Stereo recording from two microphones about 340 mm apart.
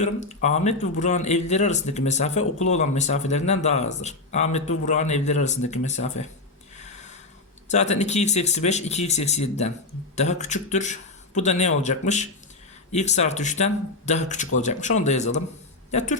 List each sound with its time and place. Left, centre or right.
0.0 s a man's voice: centre
7.7 s a man's voice: centre